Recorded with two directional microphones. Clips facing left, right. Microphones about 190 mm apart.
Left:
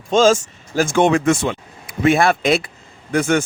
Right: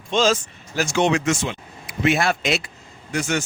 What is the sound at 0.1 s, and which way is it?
Speech, 45° left (ahead or behind).